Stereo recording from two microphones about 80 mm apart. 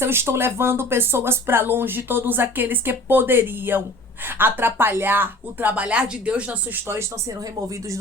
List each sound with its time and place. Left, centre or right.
0.0 s speech: right